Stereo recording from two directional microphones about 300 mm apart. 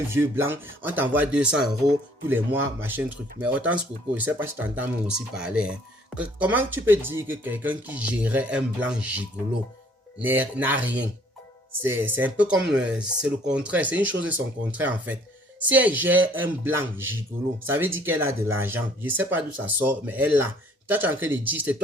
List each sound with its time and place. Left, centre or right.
0.1 s speech: centre
10.2 s speech: centre
11.8 s speech: centre
14.1 s speech: right
14.7 s speech: centre